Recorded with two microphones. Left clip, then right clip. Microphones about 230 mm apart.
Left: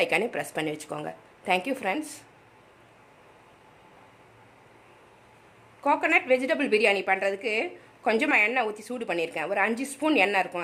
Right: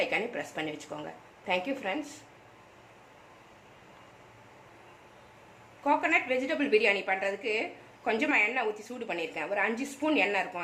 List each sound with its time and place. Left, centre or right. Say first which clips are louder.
0.0 s a woman's voice: left 5 dB; left
5.8 s a woman's voice: left 3 dB; left